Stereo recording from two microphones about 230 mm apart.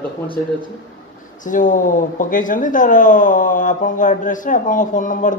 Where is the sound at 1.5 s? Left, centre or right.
Left.